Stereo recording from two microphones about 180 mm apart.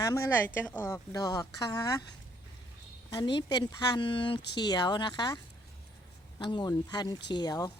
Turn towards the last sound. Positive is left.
turn(degrees=20)  # may be behind; listen again after turning